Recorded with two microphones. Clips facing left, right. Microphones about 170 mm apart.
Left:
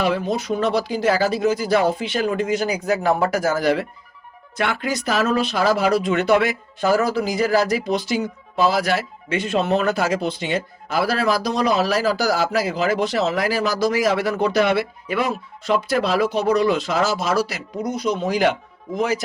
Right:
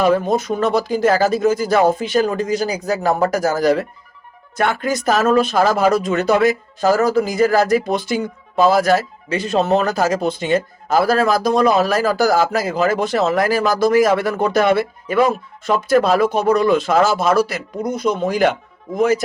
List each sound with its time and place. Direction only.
0.0 s speech: 45° right (ahead or behind)